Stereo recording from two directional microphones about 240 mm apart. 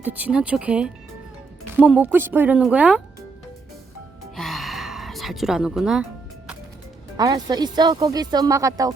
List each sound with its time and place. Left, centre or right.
0.0 s speech: centre
4.4 s music: centre
7.2 s speech: centre